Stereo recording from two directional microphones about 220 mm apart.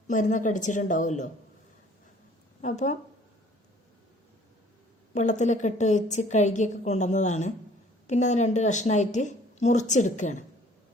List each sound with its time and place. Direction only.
0.1 s a woman's voice: 35° left (ahead or behind)
2.6 s a woman's voice: 30° left (ahead or behind)
5.1 s a woman's voice: 35° left (ahead or behind)